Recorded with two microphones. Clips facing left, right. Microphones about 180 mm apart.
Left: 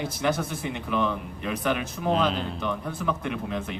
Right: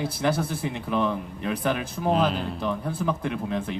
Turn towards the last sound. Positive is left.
turn(degrees=-35)  # may be behind; listen again after turning